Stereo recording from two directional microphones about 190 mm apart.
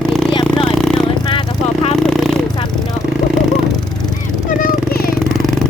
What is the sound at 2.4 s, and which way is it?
Vehicle, 20° left (ahead or behind).